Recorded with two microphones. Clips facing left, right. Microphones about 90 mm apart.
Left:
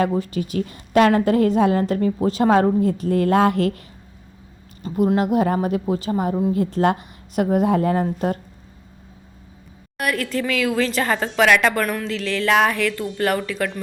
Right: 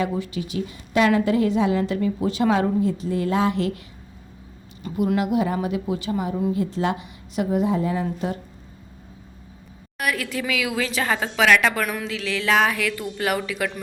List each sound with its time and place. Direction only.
0.0 s a woman's voice: 40° left (ahead or behind)
4.8 s a woman's voice: 35° left (ahead or behind)
10.0 s a woman's voice: 5° right (ahead or behind)